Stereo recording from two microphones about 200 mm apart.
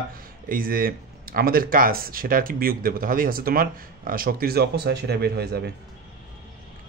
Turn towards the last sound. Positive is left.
turn(degrees=-55)  # may be behind; listen again after turning